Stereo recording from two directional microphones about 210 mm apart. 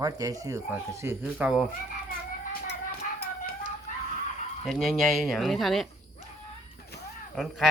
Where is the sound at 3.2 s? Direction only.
45° left (ahead or behind).